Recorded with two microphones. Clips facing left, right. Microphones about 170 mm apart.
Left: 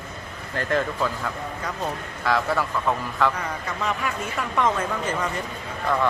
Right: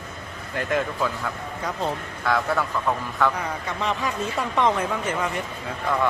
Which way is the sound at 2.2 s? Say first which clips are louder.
Even; centre (ahead or behind).